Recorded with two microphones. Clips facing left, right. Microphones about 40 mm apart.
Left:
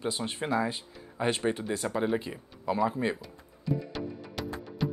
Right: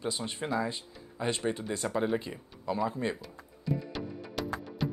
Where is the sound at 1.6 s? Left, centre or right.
Centre.